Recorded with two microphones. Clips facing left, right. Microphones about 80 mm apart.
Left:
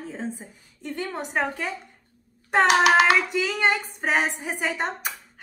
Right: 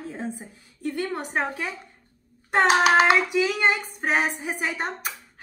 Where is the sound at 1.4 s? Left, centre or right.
Centre.